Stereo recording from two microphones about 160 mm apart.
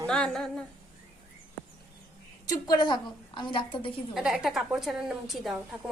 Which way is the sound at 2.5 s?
25° left (ahead or behind).